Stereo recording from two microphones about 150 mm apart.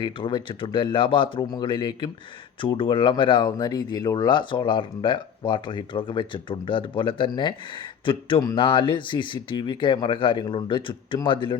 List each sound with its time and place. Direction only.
0.0 s speech: 30° left (ahead or behind)